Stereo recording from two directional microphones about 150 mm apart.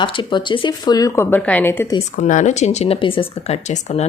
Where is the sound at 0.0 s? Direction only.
30° left (ahead or behind); by 1.9 s 15° left (ahead or behind).